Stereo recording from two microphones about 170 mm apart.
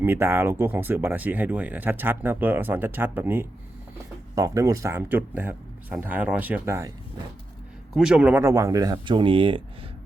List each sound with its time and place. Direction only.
0.0 s speech: 15° right (ahead or behind)
7.9 s speech: 5° right (ahead or behind); by 9.6 s 30° right (ahead or behind)